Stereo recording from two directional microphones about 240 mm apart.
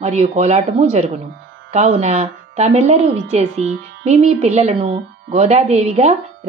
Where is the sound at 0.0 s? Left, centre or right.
Right.